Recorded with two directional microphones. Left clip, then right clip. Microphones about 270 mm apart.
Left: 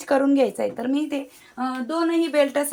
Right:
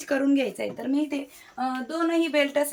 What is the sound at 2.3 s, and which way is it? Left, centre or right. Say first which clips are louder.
Speech: left 3 dB; centre.